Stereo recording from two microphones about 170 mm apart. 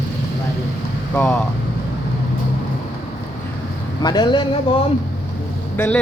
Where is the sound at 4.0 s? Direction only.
25° left (ahead or behind).